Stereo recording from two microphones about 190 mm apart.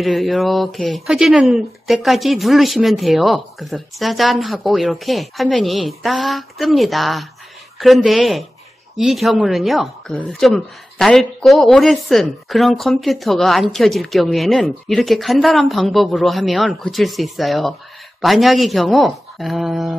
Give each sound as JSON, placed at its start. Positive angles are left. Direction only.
{"t": 0.0, "sound": "speech", "side_deg": 0}